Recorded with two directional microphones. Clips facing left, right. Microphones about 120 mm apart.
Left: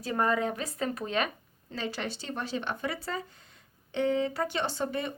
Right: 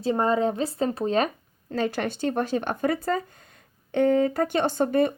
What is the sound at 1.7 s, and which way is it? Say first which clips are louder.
Speech: right 8 dB; 50° right (ahead or behind).